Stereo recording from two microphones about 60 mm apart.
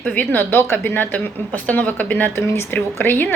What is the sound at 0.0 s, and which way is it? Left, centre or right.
Speech, left.